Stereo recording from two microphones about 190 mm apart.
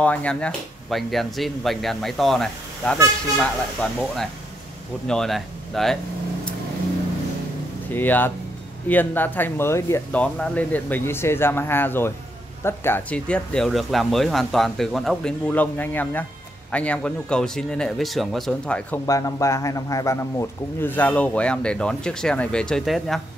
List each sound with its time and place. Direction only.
0.0 s speech: 5° left (ahead or behind)
7.9 s a man's voice: 10° left (ahead or behind)
19.0 s a man's voice: 15° left (ahead or behind); by 23.2 s centre (ahead or behind)